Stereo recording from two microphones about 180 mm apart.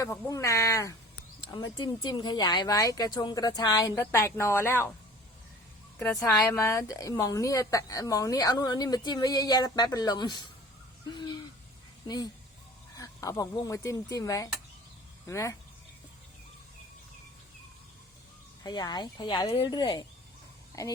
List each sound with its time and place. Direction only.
0.0 s a woman's voice: 15° left (ahead or behind)
6.0 s speech: centre (ahead or behind)
6.2 s a woman's voice: 15° left (ahead or behind)
11.1 s owl: 25° left (ahead or behind)
12.0 s a woman's voice: 20° left (ahead or behind)
18.6 s a woman's voice: 25° left (ahead or behind)